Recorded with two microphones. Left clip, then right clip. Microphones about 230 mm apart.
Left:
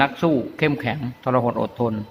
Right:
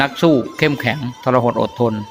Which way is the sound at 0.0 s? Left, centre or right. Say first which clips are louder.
Right 5 dB; centre.